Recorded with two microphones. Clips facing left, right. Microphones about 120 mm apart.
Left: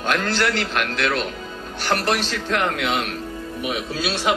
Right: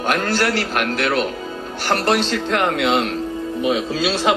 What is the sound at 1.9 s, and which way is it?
A man's voice, 25° right (ahead or behind).